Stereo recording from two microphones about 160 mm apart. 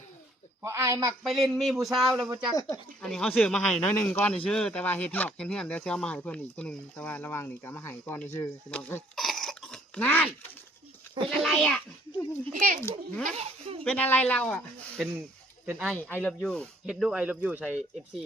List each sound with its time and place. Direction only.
0.6 s speech: 20° right (ahead or behind)
1.2 s speech: centre (ahead or behind)
9.1 s cough: centre (ahead or behind)
11.3 s speech: centre (ahead or behind)
12.5 s a child's voice: 55° right (ahead or behind)
12.8 s speech: 5° left (ahead or behind)
13.3 s speech: 40° right (ahead or behind)
13.8 s speech: 10° left (ahead or behind)
16.0 s speech: 10° left (ahead or behind); by 17.7 s 10° right (ahead or behind)